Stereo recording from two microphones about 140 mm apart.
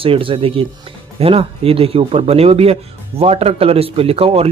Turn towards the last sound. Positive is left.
turn(degrees=-45)  # may be behind; listen again after turning